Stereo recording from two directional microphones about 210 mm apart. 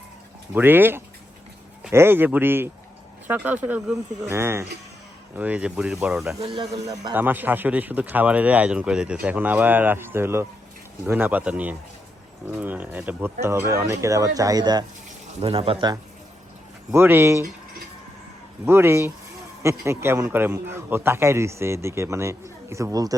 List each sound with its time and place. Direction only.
0.5 s a man's voice: 10° right (ahead or behind)
6.4 s speech: 25° right (ahead or behind)
7.1 s a man's voice: 10° right (ahead or behind)
16.9 s a man's voice: 10° right (ahead or behind)
18.6 s a man's voice: 10° right (ahead or behind)